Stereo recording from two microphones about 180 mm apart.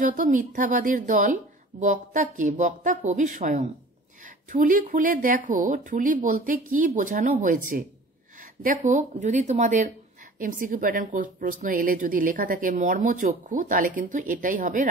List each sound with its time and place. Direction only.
0.0 s a woman's voice: 45° right (ahead or behind)